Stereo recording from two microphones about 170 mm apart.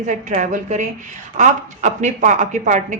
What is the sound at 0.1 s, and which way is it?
A woman's voice, 45° right (ahead or behind).